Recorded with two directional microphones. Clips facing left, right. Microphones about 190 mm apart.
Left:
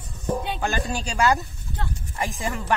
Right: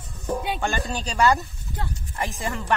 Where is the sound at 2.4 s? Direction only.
10° left (ahead or behind).